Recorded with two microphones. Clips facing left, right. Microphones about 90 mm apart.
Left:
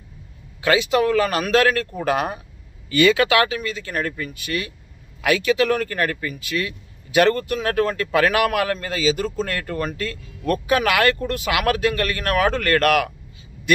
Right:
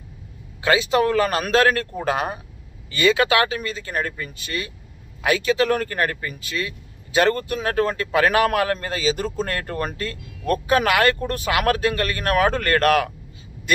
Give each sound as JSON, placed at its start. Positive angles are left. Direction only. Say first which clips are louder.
{"t": 0.6, "sound": "speech", "louder": "even", "side_deg": -30}